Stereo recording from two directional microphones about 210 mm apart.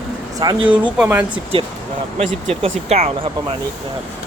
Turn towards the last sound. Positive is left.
turn(degrees=-30)  # may be behind; listen again after turning